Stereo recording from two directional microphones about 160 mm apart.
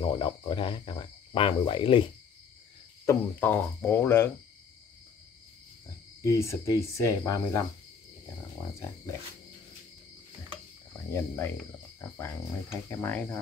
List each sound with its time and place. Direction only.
0.0 s speech: 30° left (ahead or behind)
3.1 s speech: 10° left (ahead or behind)
6.2 s speech: 20° left (ahead or behind)
11.1 s speech: 15° left (ahead or behind)
12.9 s speech: 15° left (ahead or behind)